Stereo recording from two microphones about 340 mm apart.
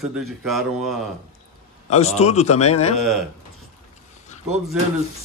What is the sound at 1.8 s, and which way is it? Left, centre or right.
A man's voice, centre.